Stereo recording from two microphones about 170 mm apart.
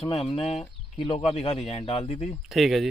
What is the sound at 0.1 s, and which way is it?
Speech, 35° left (ahead or behind).